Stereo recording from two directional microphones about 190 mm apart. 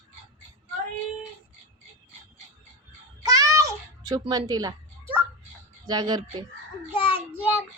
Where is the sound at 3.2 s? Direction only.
20° right (ahead or behind).